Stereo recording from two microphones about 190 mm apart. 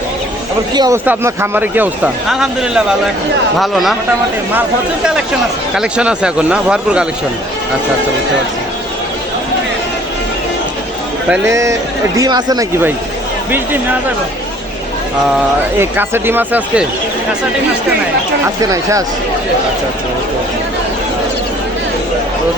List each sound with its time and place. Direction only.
0.7 s speech: 20° right (ahead or behind); by 3.9 s centre (ahead or behind)
5.7 s speech: 5° right (ahead or behind)
11.3 s speech: 15° right (ahead or behind)
15.8 s speech: 10° right (ahead or behind)
18.4 s speech: 15° right (ahead or behind)